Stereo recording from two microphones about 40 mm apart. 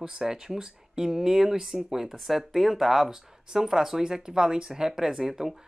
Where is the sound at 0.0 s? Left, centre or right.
Centre.